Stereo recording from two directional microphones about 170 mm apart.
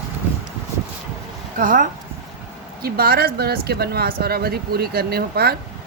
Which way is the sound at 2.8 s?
65° right (ahead or behind).